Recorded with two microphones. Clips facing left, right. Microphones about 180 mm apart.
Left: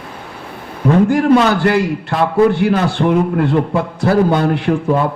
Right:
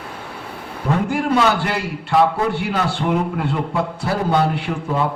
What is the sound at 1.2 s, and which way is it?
A man's voice, 60° left (ahead or behind).